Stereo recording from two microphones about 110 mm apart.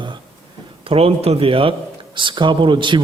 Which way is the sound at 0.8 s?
60° right (ahead or behind).